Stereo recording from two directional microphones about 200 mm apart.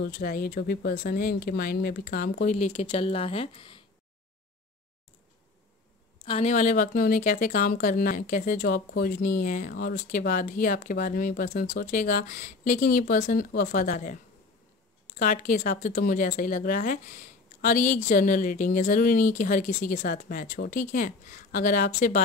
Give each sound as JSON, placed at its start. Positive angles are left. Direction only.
{"t": 0.0, "sound": "speech", "side_deg": 50}
{"t": 6.2, "sound": "a woman's voice", "side_deg": 30}